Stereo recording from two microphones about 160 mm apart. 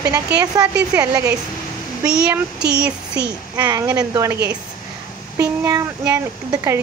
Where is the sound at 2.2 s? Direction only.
5° right (ahead or behind).